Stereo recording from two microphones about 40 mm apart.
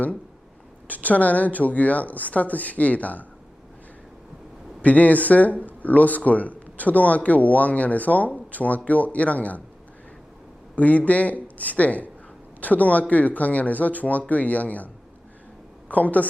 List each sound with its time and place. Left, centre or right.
0.9 s speech: left
4.8 s speech: left
10.8 s speech: left
15.9 s speech: left